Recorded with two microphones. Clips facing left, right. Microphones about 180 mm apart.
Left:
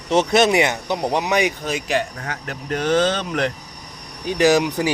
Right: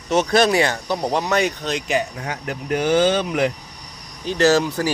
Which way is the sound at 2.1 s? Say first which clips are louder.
Right 2 dB; 15° right (ahead or behind).